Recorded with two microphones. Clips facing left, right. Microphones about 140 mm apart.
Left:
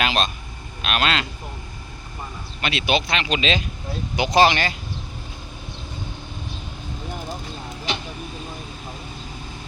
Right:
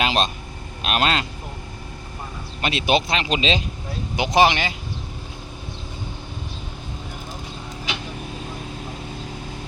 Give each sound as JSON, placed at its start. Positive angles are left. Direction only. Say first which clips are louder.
{"t": 0.0, "sound": "vehicle", "louder": "right 1 dB", "side_deg": -35}
{"t": 0.8, "sound": "speech", "louder": "right 1 dB", "side_deg": -35}
{"t": 2.6, "sound": "speech", "louder": "right 2 dB", "side_deg": -40}
{"t": 4.2, "sound": "speech", "louder": "even", "side_deg": -20}